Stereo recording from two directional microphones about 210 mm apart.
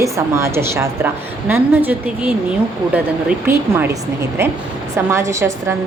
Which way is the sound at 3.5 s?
10° right (ahead or behind).